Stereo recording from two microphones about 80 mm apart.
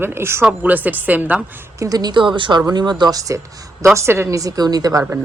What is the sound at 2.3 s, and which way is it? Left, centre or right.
Speech, right.